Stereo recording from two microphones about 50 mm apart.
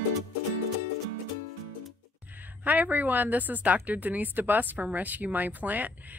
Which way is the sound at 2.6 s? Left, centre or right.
Right.